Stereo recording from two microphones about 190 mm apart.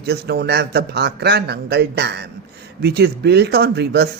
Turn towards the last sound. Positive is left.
turn(degrees=-60)  # may be behind; listen again after turning